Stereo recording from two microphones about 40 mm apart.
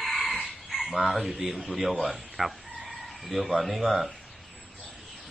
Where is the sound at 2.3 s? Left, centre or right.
Centre.